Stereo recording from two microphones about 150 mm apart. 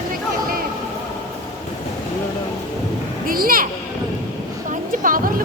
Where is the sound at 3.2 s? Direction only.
70° right (ahead or behind).